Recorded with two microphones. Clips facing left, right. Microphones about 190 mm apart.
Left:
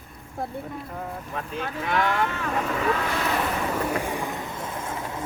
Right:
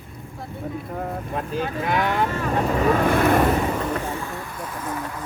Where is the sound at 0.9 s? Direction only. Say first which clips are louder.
Right 6 dB; 40° right (ahead or behind).